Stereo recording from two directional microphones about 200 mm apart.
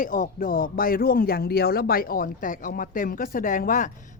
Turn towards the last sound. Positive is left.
turn(degrees=40)  # may be behind; listen again after turning